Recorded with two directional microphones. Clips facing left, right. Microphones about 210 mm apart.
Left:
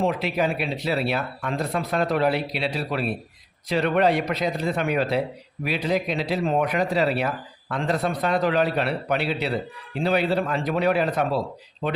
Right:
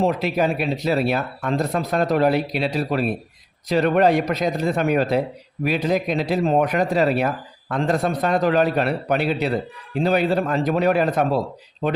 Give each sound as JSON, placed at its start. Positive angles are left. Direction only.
{"t": 0.0, "sound": "a man's voice", "side_deg": -40}